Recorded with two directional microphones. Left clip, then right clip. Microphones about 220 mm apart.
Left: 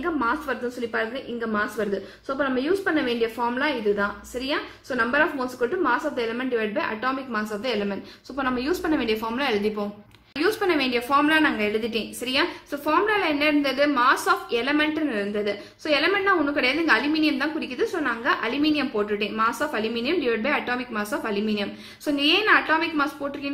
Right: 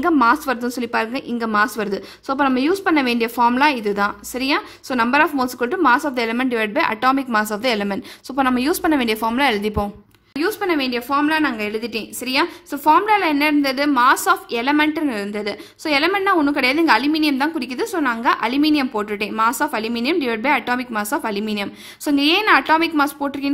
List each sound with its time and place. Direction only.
0.0 s a woman's voice: 50° right (ahead or behind)